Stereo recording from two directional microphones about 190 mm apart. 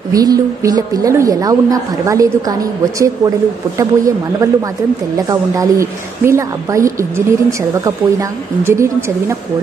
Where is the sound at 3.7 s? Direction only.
15° right (ahead or behind).